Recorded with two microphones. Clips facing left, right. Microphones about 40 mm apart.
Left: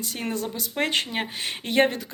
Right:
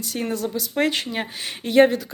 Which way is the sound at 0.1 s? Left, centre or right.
Left.